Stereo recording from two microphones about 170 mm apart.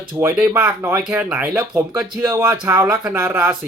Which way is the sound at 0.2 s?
20° right (ahead or behind).